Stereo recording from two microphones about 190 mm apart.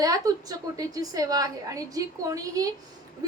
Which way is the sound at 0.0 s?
20° right (ahead or behind).